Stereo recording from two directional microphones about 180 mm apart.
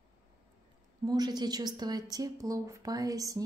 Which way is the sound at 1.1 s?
25° right (ahead or behind).